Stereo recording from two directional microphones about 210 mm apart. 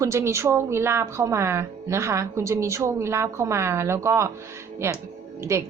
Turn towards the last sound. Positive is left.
turn(degrees=-15)  # may be behind; listen again after turning